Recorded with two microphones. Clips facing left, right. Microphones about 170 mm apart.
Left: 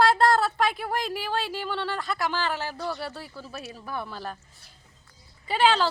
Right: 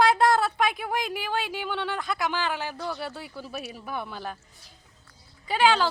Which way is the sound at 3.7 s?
15° right (ahead or behind).